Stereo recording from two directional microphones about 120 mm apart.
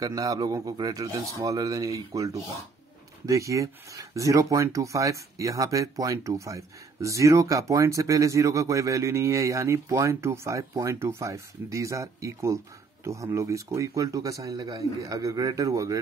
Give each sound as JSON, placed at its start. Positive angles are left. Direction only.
{"t": 0.0, "sound": "speech", "side_deg": -30}